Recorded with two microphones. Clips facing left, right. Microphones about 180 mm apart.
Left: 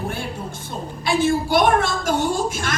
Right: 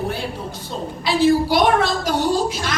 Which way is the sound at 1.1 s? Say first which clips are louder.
Right 3 dB; 50° left (ahead or behind).